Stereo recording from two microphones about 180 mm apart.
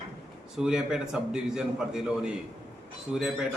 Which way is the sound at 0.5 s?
5° right (ahead or behind).